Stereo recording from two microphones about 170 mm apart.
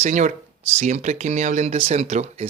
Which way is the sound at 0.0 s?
45° right (ahead or behind).